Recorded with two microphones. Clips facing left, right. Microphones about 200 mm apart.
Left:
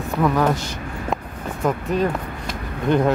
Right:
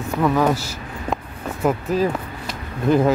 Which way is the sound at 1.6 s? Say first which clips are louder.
Right 1 dB; centre (ahead or behind).